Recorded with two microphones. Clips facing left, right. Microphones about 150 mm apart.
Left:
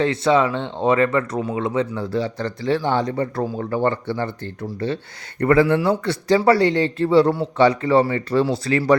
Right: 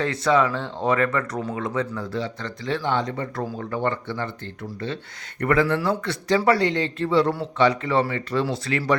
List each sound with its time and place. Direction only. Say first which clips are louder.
0.0 s speech: left 3 dB; 25° left (ahead or behind)
2.1 s speech: left 7 dB; 35° left (ahead or behind)
5.4 s speech: left 5 dB; 30° left (ahead or behind)